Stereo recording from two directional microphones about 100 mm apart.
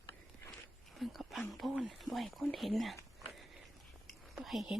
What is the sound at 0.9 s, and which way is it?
Speech, centre (ahead or behind).